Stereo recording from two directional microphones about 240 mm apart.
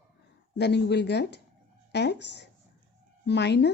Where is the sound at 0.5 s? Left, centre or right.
Left.